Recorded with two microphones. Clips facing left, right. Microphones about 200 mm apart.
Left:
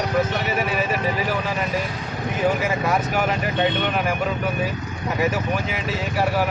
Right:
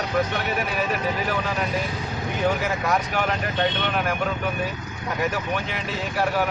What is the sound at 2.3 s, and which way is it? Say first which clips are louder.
Speech: left 2 dB; 5° left (ahead or behind).